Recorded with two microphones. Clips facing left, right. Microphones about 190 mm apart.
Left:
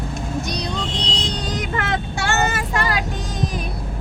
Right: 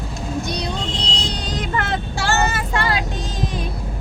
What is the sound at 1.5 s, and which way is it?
Vehicle, 30° right (ahead or behind).